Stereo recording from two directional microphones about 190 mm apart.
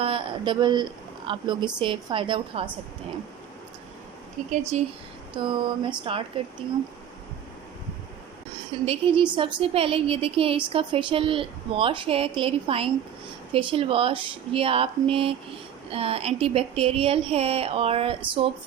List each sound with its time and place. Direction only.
0.0 s a woman's voice: 25° right (ahead or behind)
4.7 s speech: 35° right (ahead or behind)
5.3 s a woman's voice: 25° right (ahead or behind)
8.8 s a woman's voice: 30° right (ahead or behind)